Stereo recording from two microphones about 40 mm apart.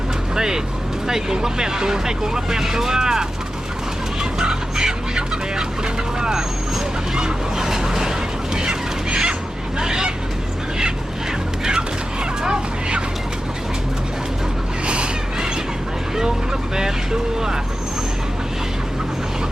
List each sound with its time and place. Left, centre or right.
0.3 s speech: centre
4.2 s fowl: centre
6.1 s speech: centre
7.2 s fowl: centre
9.7 s vehicle: centre
11.6 s fowl: right
14.8 s a sound: right
16.1 s speech: centre